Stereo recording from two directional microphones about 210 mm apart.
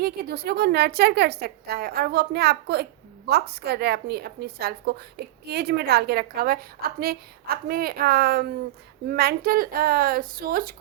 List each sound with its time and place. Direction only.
0.0 s a woman's voice: 50° right (ahead or behind)